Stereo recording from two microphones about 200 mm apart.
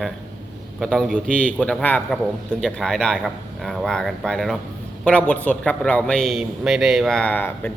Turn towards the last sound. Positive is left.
turn(degrees=10)  # may be behind; listen again after turning